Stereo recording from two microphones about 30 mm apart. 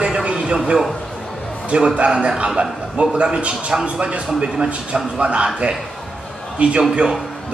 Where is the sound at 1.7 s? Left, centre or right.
Right.